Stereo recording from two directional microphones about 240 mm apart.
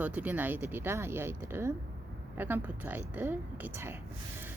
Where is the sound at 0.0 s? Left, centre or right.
Centre.